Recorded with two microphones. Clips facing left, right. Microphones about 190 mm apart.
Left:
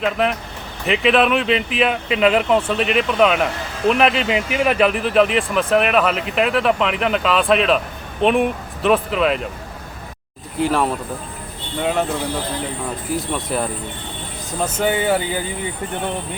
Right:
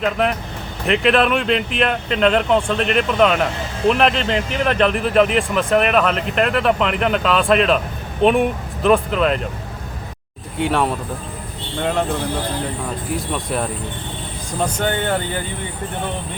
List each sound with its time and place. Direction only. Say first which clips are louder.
0.0 s speech: even; centre (ahead or behind)
10.6 s speech: even; centre (ahead or behind)
13.1 s speech: left 1 dB; centre (ahead or behind)